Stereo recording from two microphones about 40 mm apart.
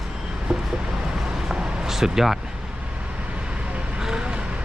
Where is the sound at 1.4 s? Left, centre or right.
Centre.